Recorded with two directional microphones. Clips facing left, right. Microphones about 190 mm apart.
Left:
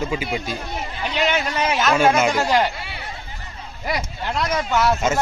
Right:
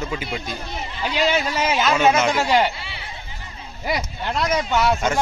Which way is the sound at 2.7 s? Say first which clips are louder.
Left 3 dB; 50° left (ahead or behind).